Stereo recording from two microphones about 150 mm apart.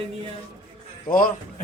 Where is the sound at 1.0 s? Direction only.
70° left (ahead or behind).